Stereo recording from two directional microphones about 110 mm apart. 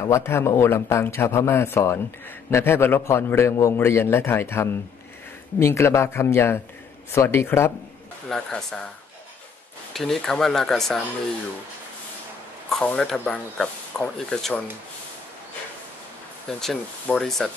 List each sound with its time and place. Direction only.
0.1 s a man's voice: 25° left (ahead or behind)
8.3 s speech: 5° left (ahead or behind)
9.9 s speech: 5° left (ahead or behind)
12.8 s speech: 5° left (ahead or behind)
16.4 s speech: 5° left (ahead or behind)